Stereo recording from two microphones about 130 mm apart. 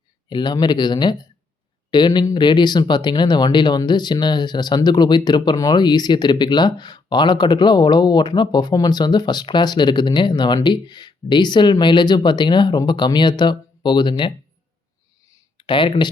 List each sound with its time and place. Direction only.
0.3 s speech: 35° left (ahead or behind)
15.5 s speech: 40° left (ahead or behind)